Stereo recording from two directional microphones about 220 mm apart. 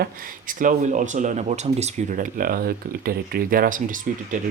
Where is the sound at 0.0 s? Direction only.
40° right (ahead or behind).